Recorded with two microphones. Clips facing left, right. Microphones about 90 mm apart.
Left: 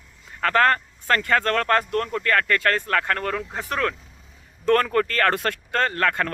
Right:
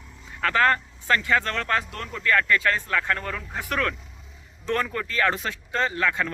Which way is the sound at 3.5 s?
35° left (ahead or behind).